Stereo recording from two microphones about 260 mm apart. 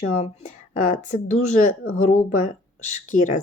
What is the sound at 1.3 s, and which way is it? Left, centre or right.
Speech, left.